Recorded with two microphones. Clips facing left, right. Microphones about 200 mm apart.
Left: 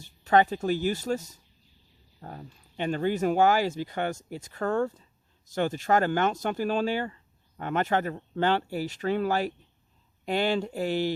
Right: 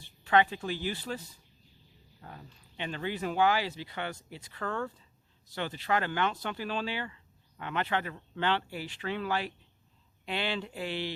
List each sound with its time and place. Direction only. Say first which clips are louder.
0.0 s speech: left 4 dB; 45° left (ahead or behind)